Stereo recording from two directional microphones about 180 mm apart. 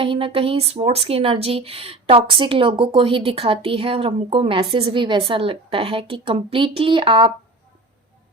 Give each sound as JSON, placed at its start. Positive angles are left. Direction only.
{"t": 0.0, "sound": "a woman's voice", "side_deg": -30}